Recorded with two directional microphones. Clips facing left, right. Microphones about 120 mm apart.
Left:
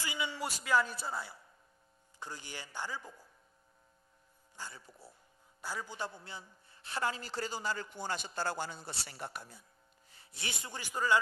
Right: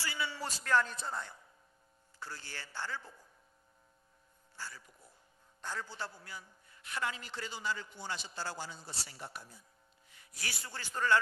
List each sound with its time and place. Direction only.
0.0 s a man's voice: 15° left (ahead or behind)
2.1 s a man's voice: 15° left (ahead or behind)
4.6 s speech: 20° left (ahead or behind)
4.8 s a man's voice: 35° left (ahead or behind)
5.6 s a man's voice: 10° left (ahead or behind); by 9.6 s 60° left (ahead or behind)
10.0 s a man's voice: 30° left (ahead or behind); by 11.1 s 15° left (ahead or behind)